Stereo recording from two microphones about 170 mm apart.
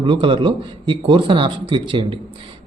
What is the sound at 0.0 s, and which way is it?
Speech, 30° right (ahead or behind).